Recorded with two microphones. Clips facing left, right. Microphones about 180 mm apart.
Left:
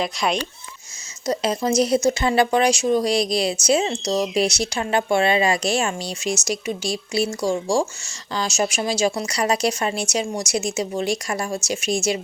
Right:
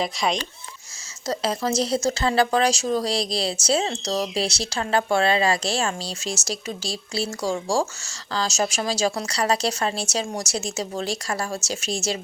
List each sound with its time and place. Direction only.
0.0 s speech: centre (ahead or behind)
1.3 s speech: 20° left (ahead or behind)